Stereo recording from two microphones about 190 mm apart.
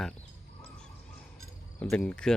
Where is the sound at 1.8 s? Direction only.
5° left (ahead or behind).